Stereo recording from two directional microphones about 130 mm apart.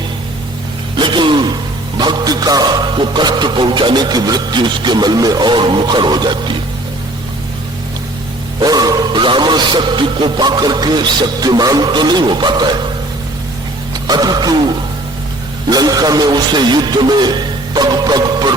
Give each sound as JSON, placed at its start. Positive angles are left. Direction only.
{"t": 0.9, "sound": "gasp", "side_deg": -35}
{"t": 2.0, "sound": "speech", "side_deg": -35}
{"t": 8.5, "sound": "speech", "side_deg": -30}
{"t": 14.1, "sound": "speech", "side_deg": -30}